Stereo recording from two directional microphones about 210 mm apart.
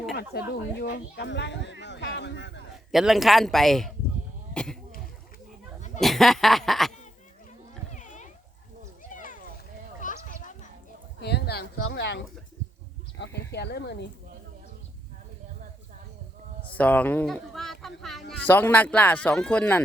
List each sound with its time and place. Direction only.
0.1 s speech: 50° left (ahead or behind)
2.9 s speech: centre (ahead or behind)
6.0 s speech: centre (ahead or behind)
7.9 s a sound: 35° left (ahead or behind)
11.2 s speech: 50° left (ahead or behind)
16.7 s speech: 5° left (ahead or behind)